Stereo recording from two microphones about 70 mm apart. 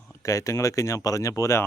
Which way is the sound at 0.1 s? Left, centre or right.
Left.